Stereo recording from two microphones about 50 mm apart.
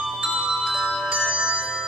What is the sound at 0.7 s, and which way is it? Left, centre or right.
Music, centre.